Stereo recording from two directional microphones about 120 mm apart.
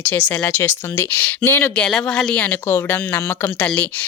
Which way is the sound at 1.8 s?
5° left (ahead or behind).